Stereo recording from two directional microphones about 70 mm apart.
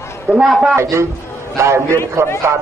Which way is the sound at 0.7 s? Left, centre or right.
Right.